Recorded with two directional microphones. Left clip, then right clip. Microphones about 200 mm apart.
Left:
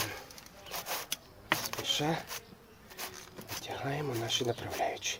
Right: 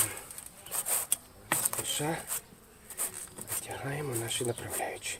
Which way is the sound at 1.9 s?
15° left (ahead or behind).